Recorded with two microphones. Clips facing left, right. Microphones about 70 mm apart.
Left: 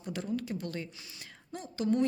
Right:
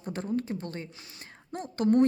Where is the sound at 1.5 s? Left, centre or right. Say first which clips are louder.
Right 6 dB; right.